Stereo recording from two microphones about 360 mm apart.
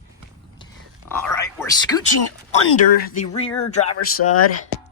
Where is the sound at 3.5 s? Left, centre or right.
Left.